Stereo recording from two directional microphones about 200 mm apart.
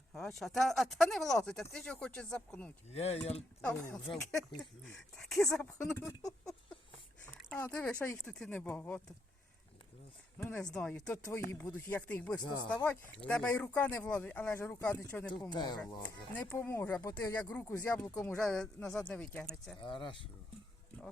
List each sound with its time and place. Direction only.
0.1 s speech: centre (ahead or behind)
2.9 s speech: 30° left (ahead or behind)
3.6 s speech: 5° left (ahead or behind)
5.7 s speech: 15° left (ahead or behind)
7.5 s speech: 10° left (ahead or behind)
10.3 s speech: 5° left (ahead or behind)
15.4 s speech: 20° left (ahead or behind)
18.3 s speech: 5° left (ahead or behind)
19.8 s speech: 25° left (ahead or behind)